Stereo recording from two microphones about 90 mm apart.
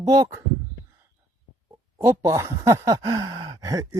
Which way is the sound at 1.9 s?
30° right (ahead or behind).